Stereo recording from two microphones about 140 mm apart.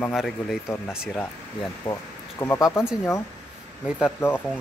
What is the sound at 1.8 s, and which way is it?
Speech, 35° left (ahead or behind).